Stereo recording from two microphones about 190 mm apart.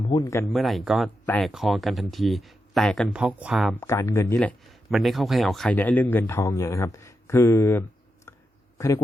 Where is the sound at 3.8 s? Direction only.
10° left (ahead or behind).